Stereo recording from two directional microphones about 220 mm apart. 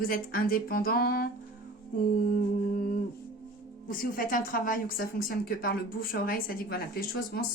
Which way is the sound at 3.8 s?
40° left (ahead or behind).